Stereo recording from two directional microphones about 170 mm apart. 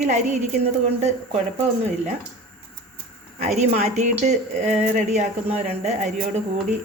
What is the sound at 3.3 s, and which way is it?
Speech, 40° right (ahead or behind).